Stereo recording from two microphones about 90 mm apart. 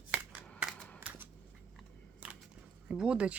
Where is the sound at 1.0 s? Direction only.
20° right (ahead or behind).